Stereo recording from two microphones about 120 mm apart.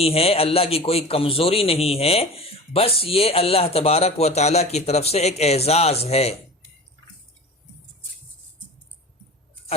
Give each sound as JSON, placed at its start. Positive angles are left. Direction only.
{"t": 0.0, "sound": "a man's voice", "side_deg": 55}